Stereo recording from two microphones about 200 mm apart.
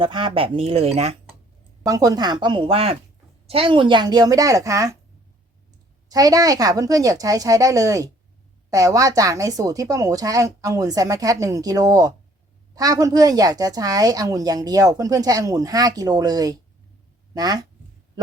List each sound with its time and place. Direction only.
0.0 s a woman's voice: 25° right (ahead or behind)
1.8 s a woman's voice: 20° right (ahead or behind)
6.1 s a woman's voice: 20° right (ahead or behind)